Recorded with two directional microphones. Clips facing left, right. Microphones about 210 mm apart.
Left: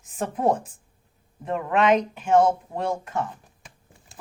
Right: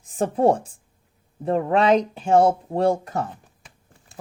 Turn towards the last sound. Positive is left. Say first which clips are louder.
# right 6 dB
turn(degrees=-35)  # may be behind; listen again after turning